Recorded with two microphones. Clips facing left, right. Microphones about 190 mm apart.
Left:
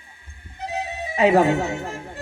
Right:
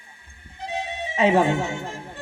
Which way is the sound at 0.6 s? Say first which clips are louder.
Left 1 dB; 35° left (ahead or behind).